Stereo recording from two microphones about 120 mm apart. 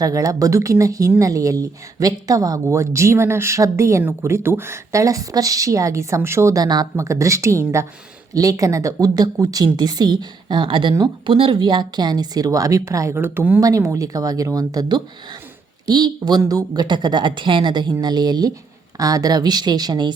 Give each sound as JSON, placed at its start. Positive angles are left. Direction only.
{"t": 0.0, "sound": "a woman's voice", "side_deg": -30}
{"t": 13.6, "sound": "a woman's voice", "side_deg": -30}